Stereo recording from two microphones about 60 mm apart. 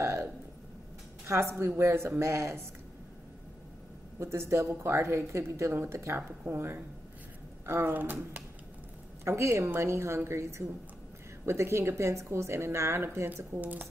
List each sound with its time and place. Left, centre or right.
0.0 s a sound: right
1.2 s a woman's voice: right
4.2 s a woman's voice: right
6.2 s speech: right
9.2 s a woman's voice: right
13.6 s speech: right